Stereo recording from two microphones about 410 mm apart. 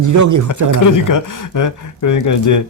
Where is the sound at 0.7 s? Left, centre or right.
Left.